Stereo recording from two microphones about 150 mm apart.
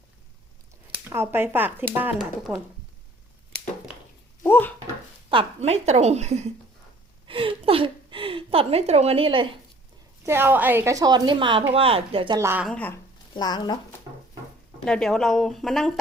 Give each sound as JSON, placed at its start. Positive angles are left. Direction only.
{"t": 1.1, "sound": "speech", "side_deg": -15}
{"t": 4.4, "sound": "a sound", "side_deg": 15}
{"t": 5.3, "sound": "a woman's voice", "side_deg": -40}
{"t": 7.3, "sound": "a woman's voice", "side_deg": -35}
{"t": 10.2, "sound": "a woman's voice", "side_deg": -15}
{"t": 12.4, "sound": "speech", "side_deg": -15}
{"t": 12.6, "sound": "speech", "side_deg": 10}
{"t": 13.3, "sound": "speech", "side_deg": 30}
{"t": 14.8, "sound": "speech", "side_deg": 5}